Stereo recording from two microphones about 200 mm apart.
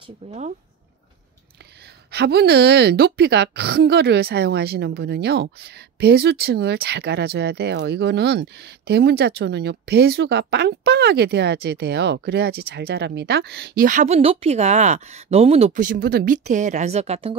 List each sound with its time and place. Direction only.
0.3 s speech: 35° right (ahead or behind)
2.0 s a woman's voice: 55° right (ahead or behind)
16.4 s speech: 35° right (ahead or behind)